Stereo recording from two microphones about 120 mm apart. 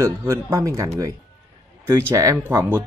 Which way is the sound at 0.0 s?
25° right (ahead or behind).